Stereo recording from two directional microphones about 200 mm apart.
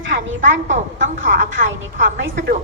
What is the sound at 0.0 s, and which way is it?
Speech, 70° right (ahead or behind).